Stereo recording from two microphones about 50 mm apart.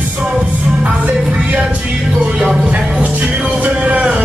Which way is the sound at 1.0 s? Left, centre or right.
Right.